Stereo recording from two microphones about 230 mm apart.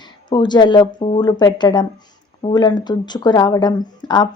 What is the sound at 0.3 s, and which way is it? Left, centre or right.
Speech, centre.